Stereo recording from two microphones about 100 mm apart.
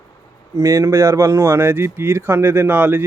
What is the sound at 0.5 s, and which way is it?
Speech, 30° right (ahead or behind).